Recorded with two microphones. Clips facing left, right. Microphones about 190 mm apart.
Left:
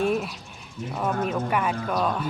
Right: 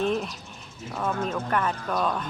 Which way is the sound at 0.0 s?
5° left (ahead or behind).